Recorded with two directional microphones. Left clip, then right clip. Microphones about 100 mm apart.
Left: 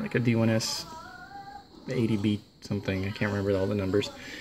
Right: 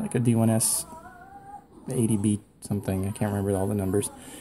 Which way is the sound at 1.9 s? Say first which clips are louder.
Right 1 dB; 20° right (ahead or behind).